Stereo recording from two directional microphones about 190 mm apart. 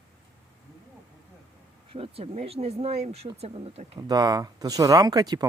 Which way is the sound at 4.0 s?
20° right (ahead or behind).